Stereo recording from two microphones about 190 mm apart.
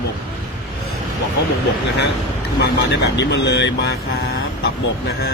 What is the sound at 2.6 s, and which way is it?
Speech, 65° left (ahead or behind).